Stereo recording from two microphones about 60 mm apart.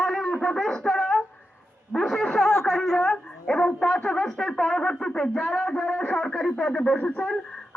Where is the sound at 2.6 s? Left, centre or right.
Centre.